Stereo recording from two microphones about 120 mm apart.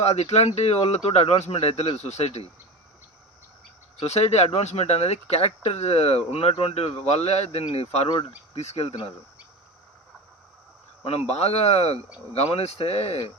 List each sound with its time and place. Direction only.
0.0 s speech: 65° left (ahead or behind)
4.0 s speech: 65° left (ahead or behind)
11.0 s speech: 60° left (ahead or behind)